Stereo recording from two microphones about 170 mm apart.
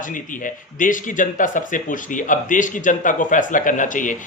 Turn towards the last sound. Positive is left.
turn(degrees=50)  # may be behind; listen again after turning